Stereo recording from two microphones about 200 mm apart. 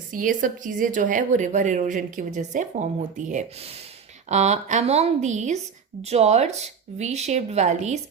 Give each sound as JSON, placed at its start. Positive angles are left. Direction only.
{"t": 0.1, "sound": "speech", "side_deg": -40}